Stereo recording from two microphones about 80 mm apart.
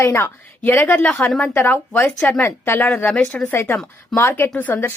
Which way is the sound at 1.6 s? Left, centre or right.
Left.